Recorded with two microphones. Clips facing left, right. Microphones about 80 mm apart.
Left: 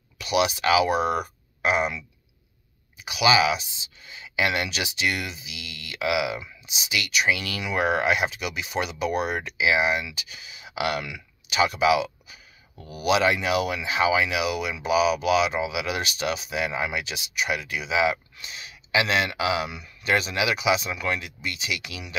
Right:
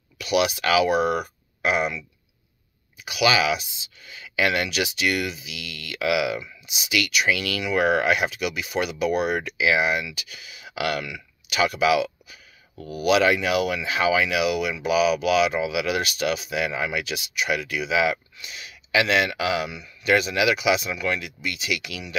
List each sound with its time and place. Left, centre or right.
0.2 s speech: left
3.1 s speech: left
6.6 s speech: left
9.6 s speech: left
11.4 s speech: left
13.1 s speech: left
18.4 s speech: left